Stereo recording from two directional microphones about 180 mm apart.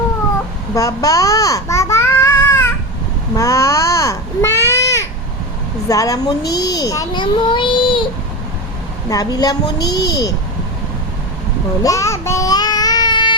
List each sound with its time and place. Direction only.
0.8 s babbling: 20° left (ahead or behind)
5.9 s a child's voice: 20° left (ahead or behind)
9.0 s a child's voice: 20° left (ahead or behind)
9.6 s a child's voice: 65° left (ahead or behind)
9.9 s a child's voice: 20° left (ahead or behind)
11.8 s child singing: 15° left (ahead or behind)